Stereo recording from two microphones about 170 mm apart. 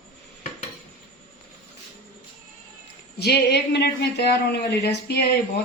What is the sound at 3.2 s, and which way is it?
A woman's voice, 75° left (ahead or behind).